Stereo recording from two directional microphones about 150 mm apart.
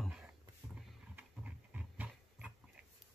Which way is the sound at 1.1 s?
10° right (ahead or behind).